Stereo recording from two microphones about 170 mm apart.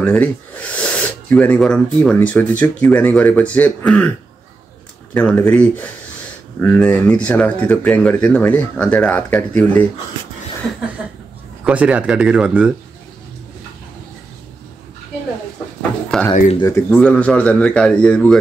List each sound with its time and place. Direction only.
0.0 s speech: 10° left (ahead or behind)
5.1 s speech: 10° left (ahead or behind)
11.6 s speech: 10° right (ahead or behind)
16.1 s speech: 5° left (ahead or behind)
16.5 s speech: 20° left (ahead or behind)
16.9 s speech: 10° left (ahead or behind)